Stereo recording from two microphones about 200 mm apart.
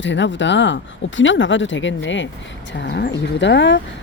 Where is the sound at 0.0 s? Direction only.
65° left (ahead or behind).